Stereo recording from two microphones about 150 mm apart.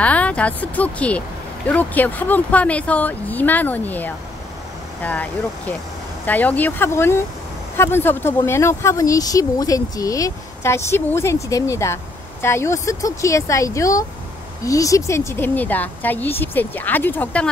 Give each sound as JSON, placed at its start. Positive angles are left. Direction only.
{"t": 0.0, "sound": "speech", "side_deg": 10}